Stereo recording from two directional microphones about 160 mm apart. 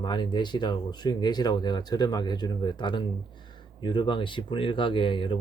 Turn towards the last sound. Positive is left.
turn(degrees=30)  # may be behind; listen again after turning